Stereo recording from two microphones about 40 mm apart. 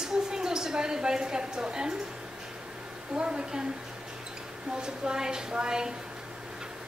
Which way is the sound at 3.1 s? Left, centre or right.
Right.